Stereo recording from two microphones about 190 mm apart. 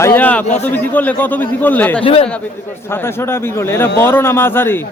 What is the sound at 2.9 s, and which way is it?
Speech, 15° left (ahead or behind).